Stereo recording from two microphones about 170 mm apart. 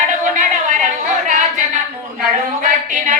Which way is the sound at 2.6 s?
50° right (ahead or behind).